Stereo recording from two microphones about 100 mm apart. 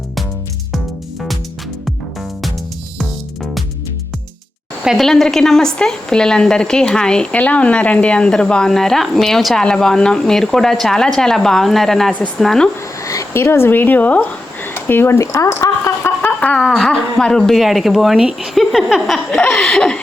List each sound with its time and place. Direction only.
3.0 s music: centre (ahead or behind)
4.8 s a woman's voice: 5° right (ahead or behind)
13.1 s speech: 30° left (ahead or behind)
16.0 s a sound: 20° left (ahead or behind)
16.6 s a woman's voice: centre (ahead or behind)